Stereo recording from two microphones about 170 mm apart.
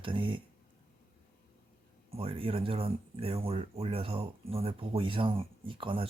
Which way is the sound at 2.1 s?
35° right (ahead or behind).